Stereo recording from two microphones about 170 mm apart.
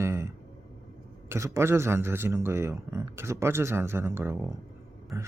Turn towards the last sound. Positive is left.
turn(degrees=-20)  # may be behind; listen again after turning